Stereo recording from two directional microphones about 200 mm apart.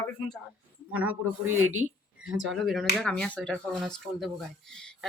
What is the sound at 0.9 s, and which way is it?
Speech, 5° right (ahead or behind).